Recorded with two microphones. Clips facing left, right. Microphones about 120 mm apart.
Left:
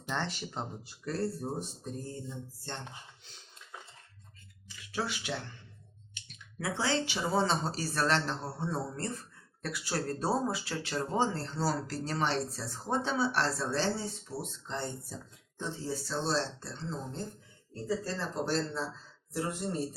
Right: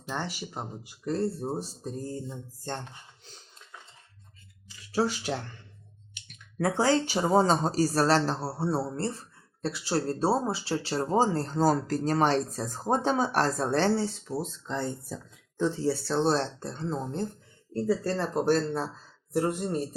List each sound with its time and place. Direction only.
0.1 s speech: 10° right (ahead or behind); by 2.8 s 45° right (ahead or behind)
4.9 s speech: 35° right (ahead or behind)
6.2 s speech: 50° right (ahead or behind); by 14.4 s 90° right
15.5 s speech: 85° right; by 19.8 s 50° right (ahead or behind)